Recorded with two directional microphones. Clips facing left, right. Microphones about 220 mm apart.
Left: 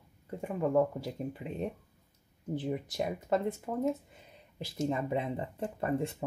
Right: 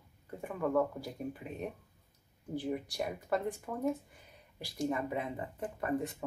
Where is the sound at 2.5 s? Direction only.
20° left (ahead or behind).